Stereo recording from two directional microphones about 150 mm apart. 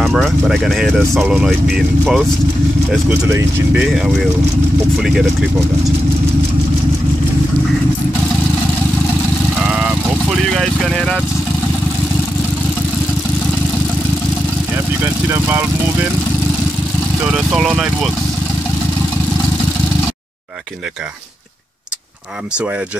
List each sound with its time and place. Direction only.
0.0 s speech: centre (ahead or behind)
3.1 s speech: 20° right (ahead or behind)
3.7 s speech: 5° right (ahead or behind)
10.6 s speech: centre (ahead or behind)
17.3 s speech: 5° right (ahead or behind)